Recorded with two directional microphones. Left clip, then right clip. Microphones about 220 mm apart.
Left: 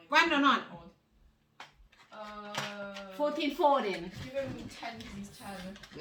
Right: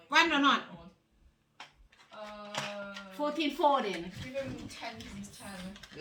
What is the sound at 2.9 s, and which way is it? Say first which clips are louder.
Speech: left 2 dB; centre (ahead or behind).